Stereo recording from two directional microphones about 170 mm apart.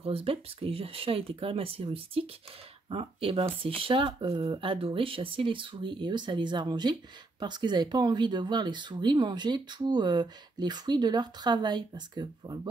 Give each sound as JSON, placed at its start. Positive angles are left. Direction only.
{"t": 0.0, "sound": "speech", "side_deg": -35}